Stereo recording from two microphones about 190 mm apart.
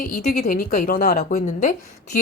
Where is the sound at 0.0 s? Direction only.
45° left (ahead or behind).